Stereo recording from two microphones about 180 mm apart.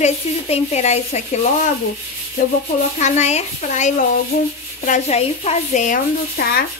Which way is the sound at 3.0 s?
40° left (ahead or behind).